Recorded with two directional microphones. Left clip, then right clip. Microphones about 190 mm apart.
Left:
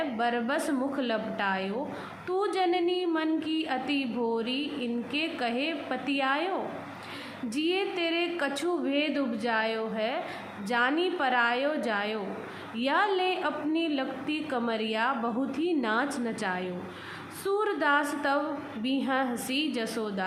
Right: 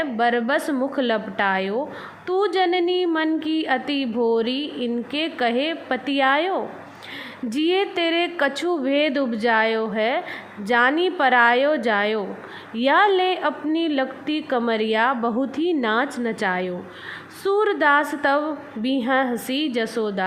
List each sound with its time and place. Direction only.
0.2 s a woman's voice: 35° right (ahead or behind)